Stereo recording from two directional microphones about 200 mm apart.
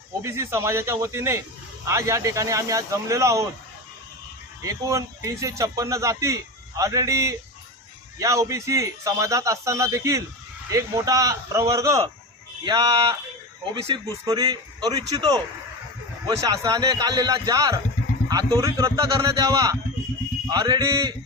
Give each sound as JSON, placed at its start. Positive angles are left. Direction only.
{"t": 0.2, "sound": "speech", "side_deg": -15}
{"t": 4.6, "sound": "speech", "side_deg": -15}